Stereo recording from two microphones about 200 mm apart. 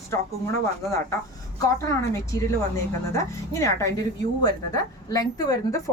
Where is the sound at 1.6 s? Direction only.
15° left (ahead or behind).